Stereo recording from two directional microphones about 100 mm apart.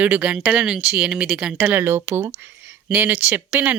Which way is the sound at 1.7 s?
25° right (ahead or behind).